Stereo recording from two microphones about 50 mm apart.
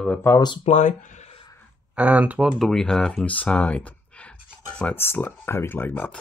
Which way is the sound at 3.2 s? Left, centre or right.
Left.